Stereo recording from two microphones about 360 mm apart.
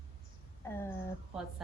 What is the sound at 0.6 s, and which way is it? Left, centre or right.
Speech, centre.